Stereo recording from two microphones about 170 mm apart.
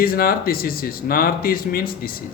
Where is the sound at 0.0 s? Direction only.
60° left (ahead or behind).